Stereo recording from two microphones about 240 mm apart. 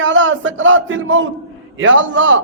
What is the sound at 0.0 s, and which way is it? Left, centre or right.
A man's voice, right.